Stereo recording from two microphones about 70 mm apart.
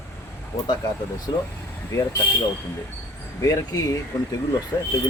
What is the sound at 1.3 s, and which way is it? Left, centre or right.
Speech, left.